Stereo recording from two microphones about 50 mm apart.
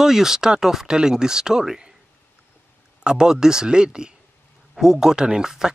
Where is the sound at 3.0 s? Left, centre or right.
Centre.